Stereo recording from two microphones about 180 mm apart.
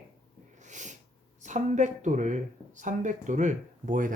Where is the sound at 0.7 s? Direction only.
40° right (ahead or behind).